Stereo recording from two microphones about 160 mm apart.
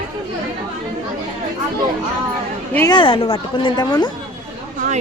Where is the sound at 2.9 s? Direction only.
30° left (ahead or behind).